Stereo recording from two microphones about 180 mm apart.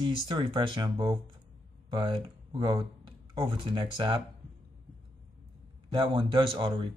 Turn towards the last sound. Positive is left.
turn(degrees=-30)  # may be behind; listen again after turning